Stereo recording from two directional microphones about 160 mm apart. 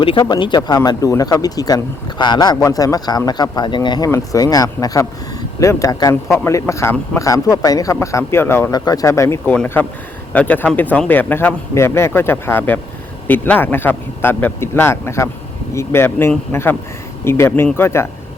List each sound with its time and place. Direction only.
0.0 s speech: 30° left (ahead or behind); by 18.1 s 15° left (ahead or behind)